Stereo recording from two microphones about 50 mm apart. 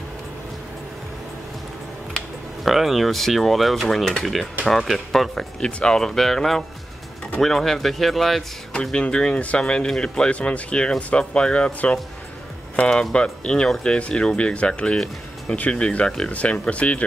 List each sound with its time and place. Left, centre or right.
2.6 s speech: centre
5.6 s speech: centre
8.9 s speech: centre
10.3 s speech: left
12.7 s speech: centre